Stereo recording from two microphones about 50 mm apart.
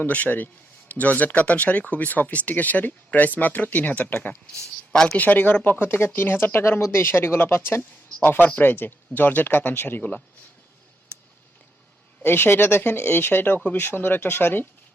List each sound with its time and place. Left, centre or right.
0.1 s speech: left
12.2 s speech: left